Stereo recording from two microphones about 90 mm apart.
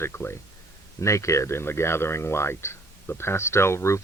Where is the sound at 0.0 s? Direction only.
25° left (ahead or behind).